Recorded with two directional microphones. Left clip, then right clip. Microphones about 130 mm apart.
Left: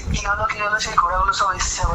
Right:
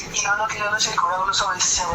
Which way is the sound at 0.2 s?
25° left (ahead or behind).